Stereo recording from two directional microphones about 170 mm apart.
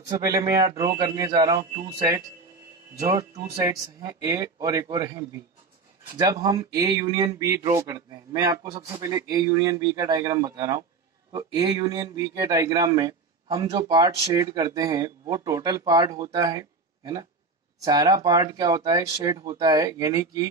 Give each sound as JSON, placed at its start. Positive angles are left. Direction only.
{"t": 0.1, "sound": "speech", "side_deg": -20}